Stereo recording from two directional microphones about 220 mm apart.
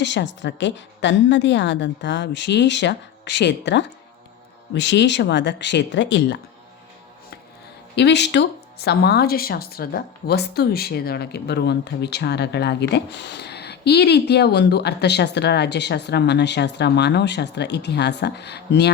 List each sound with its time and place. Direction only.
0.0 s speech: 55° left (ahead or behind)
7.9 s speech: 50° left (ahead or behind)